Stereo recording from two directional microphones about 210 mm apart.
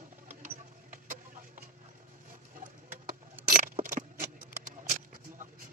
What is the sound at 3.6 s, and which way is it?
Keys jangling, 35° right (ahead or behind).